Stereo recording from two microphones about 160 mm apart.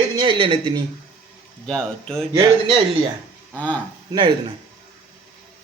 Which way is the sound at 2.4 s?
30° right (ahead or behind).